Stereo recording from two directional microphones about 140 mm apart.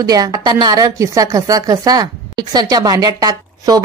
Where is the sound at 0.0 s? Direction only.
25° right (ahead or behind).